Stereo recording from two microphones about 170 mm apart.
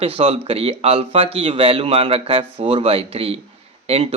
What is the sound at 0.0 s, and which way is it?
Speech, 35° right (ahead or behind).